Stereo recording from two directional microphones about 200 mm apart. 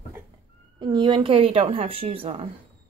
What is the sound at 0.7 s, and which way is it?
Speech, 20° right (ahead or behind).